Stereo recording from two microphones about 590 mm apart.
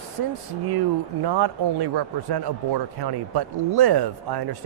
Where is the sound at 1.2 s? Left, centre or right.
Right.